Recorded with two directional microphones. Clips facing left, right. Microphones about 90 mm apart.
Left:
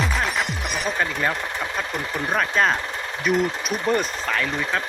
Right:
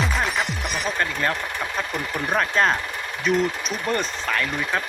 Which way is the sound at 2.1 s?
Centre (ahead or behind).